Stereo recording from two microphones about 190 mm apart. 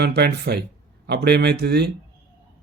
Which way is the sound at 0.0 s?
60° right (ahead or behind).